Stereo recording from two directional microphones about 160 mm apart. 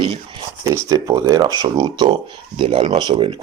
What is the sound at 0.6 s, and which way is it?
Speech, 20° right (ahead or behind).